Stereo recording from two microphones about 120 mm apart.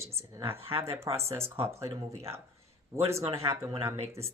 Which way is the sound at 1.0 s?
25° right (ahead or behind).